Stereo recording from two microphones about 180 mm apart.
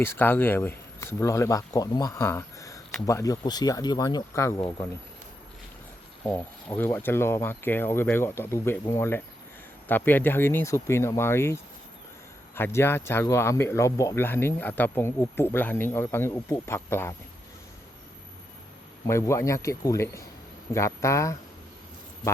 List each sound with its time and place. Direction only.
0.0 s speech: 10° left (ahead or behind)
6.2 s speech: 10° left (ahead or behind)
19.0 s speech: 15° left (ahead or behind)